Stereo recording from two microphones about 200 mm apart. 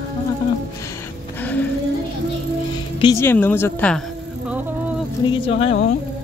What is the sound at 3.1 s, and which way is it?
Speech, 10° left (ahead or behind).